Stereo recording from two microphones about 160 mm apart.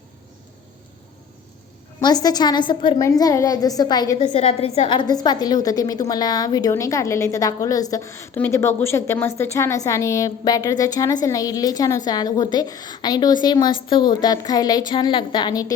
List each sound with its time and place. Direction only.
2.0 s a woman's voice: 25° left (ahead or behind)
4.2 s a woman's voice: 40° left (ahead or behind)